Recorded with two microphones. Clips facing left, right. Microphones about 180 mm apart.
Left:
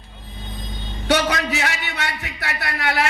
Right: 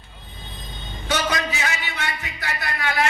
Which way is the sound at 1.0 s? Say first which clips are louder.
Left 4 dB; 65° left (ahead or behind).